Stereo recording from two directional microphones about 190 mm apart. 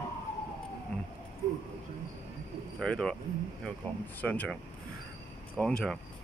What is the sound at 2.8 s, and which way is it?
Speech, 5° left (ahead or behind).